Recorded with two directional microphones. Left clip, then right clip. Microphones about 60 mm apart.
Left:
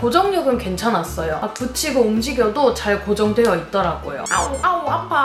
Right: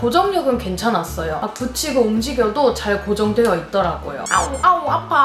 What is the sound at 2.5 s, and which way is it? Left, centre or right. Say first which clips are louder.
Speech: right 1 dB; centre.